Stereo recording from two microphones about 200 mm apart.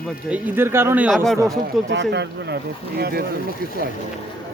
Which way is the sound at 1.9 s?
60° right (ahead or behind).